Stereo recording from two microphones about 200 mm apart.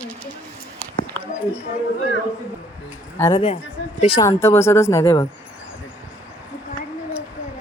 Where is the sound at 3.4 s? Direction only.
30° left (ahead or behind).